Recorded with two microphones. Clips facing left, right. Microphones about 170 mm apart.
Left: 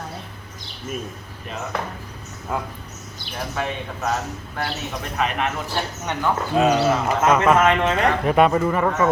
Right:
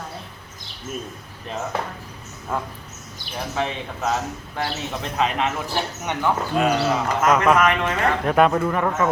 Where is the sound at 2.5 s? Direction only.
5° left (ahead or behind).